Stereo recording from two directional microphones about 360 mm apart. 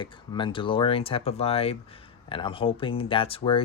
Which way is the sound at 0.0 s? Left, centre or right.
Centre.